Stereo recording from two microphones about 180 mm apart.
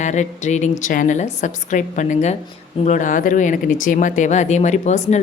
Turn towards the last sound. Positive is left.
turn(degrees=40)  # may be behind; listen again after turning